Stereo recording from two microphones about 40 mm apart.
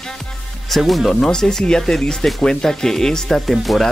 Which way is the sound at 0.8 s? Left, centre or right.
Centre.